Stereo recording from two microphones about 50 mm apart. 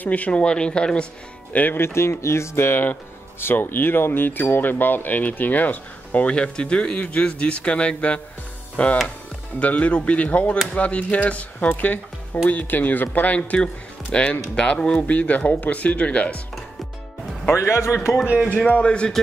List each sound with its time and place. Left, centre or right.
0.0 s speech: left
1.5 s speech: left
1.8 s speech: left
17.6 s a man's voice: left
18.5 s speech: left